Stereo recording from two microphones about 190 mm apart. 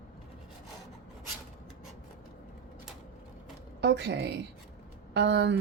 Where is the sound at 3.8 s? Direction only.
65° right (ahead or behind).